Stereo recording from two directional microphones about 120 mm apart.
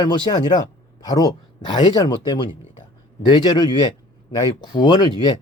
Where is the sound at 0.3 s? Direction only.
35° left (ahead or behind).